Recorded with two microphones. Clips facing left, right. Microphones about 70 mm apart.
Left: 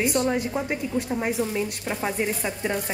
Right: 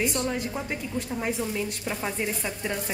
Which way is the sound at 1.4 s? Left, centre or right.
Left.